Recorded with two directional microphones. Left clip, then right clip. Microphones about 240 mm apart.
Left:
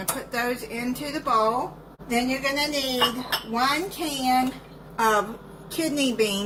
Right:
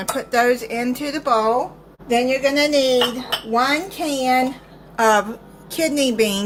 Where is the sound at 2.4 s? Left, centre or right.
Right.